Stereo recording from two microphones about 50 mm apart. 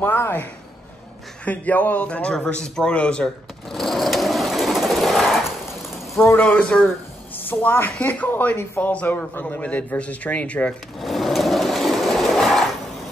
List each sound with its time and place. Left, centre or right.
0.0 s a woman's voice: left
2.3 s a man's voice: centre
3.7 s sewing machine: centre
6.2 s a man's voice: left
7.3 s a woman's voice: left
9.3 s a man's voice: left
11.0 s a sound: centre